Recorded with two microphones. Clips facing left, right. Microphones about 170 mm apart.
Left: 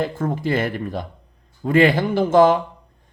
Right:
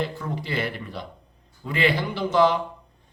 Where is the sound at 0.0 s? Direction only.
50° left (ahead or behind).